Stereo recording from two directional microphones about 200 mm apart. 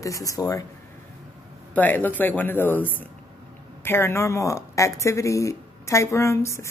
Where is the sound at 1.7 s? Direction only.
10° left (ahead or behind).